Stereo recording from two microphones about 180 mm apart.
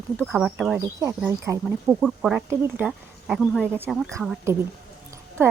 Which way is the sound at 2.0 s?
Centre (ahead or behind).